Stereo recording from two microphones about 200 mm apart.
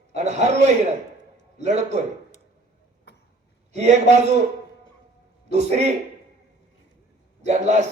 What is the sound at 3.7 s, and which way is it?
Speech, 35° right (ahead or behind).